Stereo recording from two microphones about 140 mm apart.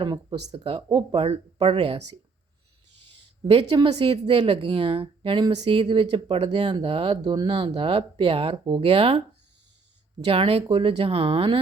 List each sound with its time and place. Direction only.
0.0 s a woman's voice: 35° right (ahead or behind)
3.8 s a woman's voice: 40° right (ahead or behind)
10.2 s a woman's voice: 45° right (ahead or behind)